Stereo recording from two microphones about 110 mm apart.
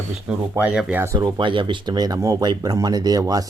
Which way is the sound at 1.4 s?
45° right (ahead or behind).